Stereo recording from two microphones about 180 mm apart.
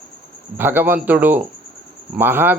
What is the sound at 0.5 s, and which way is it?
Speech, 10° right (ahead or behind).